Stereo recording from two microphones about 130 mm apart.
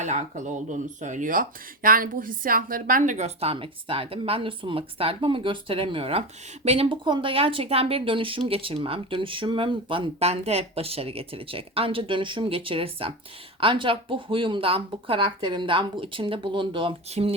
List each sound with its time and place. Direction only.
0.0 s speech: 65° right (ahead or behind); by 16.9 s 40° right (ahead or behind)
17.1 s speech: 55° right (ahead or behind)